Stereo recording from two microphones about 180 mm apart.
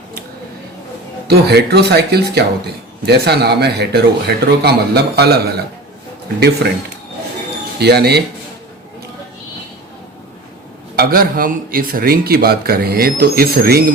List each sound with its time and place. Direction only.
1.3 s speech: 65° right (ahead or behind)
7.8 s speech: 65° right (ahead or behind)
10.9 s speech: 55° right (ahead or behind)